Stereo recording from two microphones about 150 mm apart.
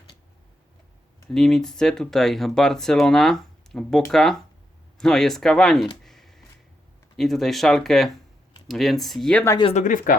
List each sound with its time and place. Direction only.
1.3 s speech: centre (ahead or behind)
6.0 s a sound: centre (ahead or behind)
7.2 s speech: centre (ahead or behind)
9.6 s speech: 55° left (ahead or behind)